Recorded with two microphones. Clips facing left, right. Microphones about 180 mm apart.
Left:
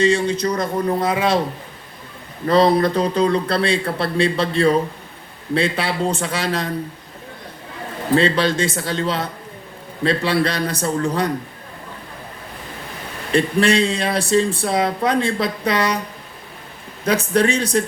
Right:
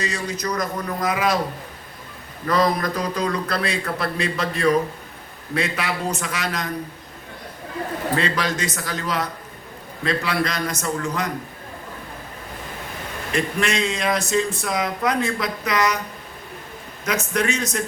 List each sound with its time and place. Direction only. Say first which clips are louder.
0.0 s speech: left 10 dB; 30° left (ahead or behind)
2.5 s speech: left 6 dB; 30° left (ahead or behind)
8.1 s speech: left 8 dB; 30° left (ahead or behind)
13.3 s speech: left 7 dB; 35° left (ahead or behind)
17.1 s speech: left 6 dB; 30° left (ahead or behind)